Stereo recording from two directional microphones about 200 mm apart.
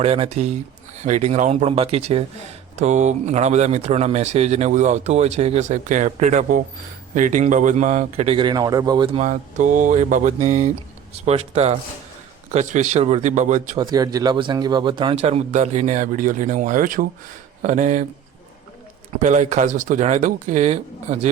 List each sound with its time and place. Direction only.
0.0 s speech: 30° right (ahead or behind)
13.7 s speech: 20° right (ahead or behind); by 18.0 s 35° right (ahead or behind)
19.2 s speech: 35° right (ahead or behind)